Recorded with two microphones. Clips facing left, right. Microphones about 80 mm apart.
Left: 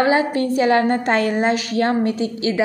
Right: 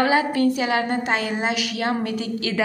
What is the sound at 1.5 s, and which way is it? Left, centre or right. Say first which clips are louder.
A woman's voice: left 5 dB; left.